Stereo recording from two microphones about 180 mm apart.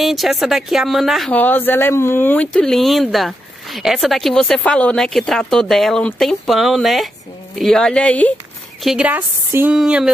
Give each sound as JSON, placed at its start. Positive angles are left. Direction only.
{"t": 0.0, "sound": "speech", "side_deg": 0}
{"t": 8.8, "sound": "a woman's voice", "side_deg": -5}